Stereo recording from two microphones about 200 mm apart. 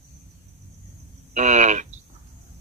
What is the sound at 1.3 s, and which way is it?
Speech, 35° right (ahead or behind).